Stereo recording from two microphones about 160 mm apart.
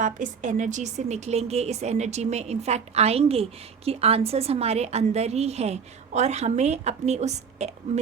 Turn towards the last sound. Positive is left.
turn(degrees=-45)  # may be behind; listen again after turning